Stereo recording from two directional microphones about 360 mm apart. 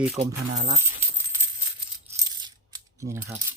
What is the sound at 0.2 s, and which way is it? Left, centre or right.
Speech, centre.